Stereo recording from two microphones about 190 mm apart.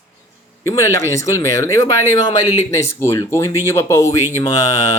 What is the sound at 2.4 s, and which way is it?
Speech, 35° left (ahead or behind).